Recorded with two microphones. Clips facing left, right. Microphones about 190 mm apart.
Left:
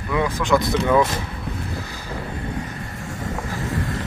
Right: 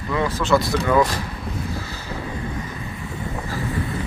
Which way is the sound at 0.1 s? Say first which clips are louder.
Even; 15° left (ahead or behind).